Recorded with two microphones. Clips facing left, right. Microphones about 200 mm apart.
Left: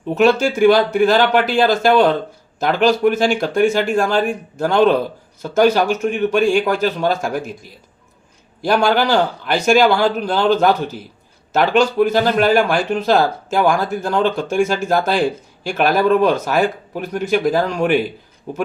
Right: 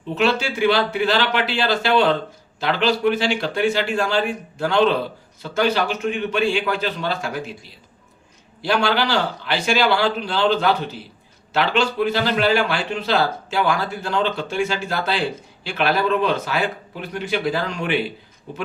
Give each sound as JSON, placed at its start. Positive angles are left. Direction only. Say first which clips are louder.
{"t": 0.1, "sound": "speech", "louder": "left 6 dB", "side_deg": 45}